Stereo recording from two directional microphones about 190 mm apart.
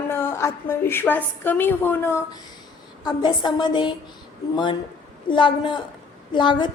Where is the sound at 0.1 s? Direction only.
10° left (ahead or behind).